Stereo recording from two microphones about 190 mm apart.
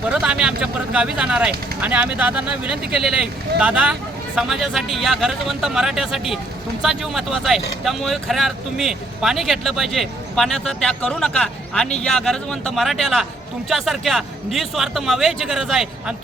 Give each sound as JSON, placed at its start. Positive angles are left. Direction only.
{"t": 0.1, "sound": "speech", "side_deg": -5}